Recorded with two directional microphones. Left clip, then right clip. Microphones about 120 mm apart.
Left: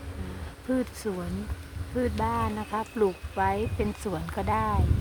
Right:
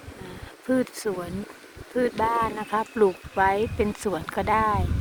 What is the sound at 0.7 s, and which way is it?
Speech, 35° right (ahead or behind).